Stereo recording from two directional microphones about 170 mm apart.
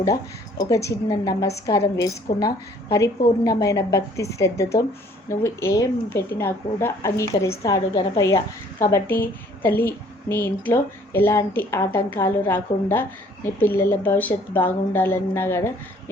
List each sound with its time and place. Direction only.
0.6 s a woman's voice: 20° left (ahead or behind)